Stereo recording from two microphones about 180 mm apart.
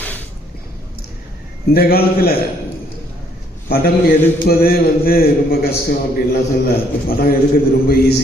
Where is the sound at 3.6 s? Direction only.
60° left (ahead or behind).